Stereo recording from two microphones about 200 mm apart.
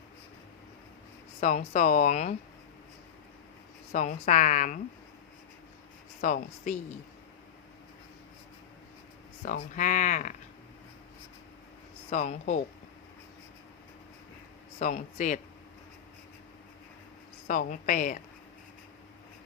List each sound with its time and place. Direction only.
1.4 s speech: 40° left (ahead or behind)
3.9 s speech: 35° left (ahead or behind)
6.2 s speech: 40° left (ahead or behind)
9.4 s speech: 40° left (ahead or behind)
12.1 s speech: 35° left (ahead or behind)
14.8 s speech: 40° left (ahead or behind)
17.5 s speech: 40° left (ahead or behind)